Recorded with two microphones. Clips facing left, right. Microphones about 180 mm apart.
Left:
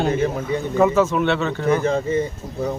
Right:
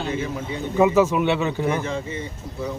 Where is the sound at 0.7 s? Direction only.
15° right (ahead or behind).